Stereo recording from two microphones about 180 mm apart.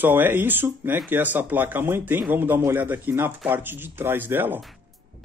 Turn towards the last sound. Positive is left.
turn(degrees=-10)  # may be behind; listen again after turning